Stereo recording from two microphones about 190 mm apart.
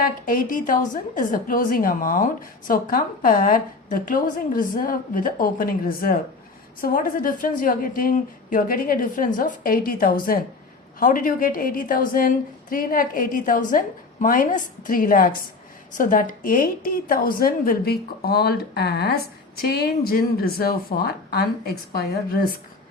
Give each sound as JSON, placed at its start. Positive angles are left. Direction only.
{"t": 0.0, "sound": "a woman's voice", "side_deg": 45}